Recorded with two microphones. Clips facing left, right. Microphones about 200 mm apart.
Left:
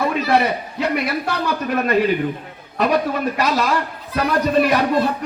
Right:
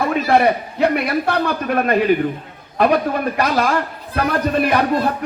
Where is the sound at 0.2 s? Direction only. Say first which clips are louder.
Right 3 dB; 50° right (ahead or behind).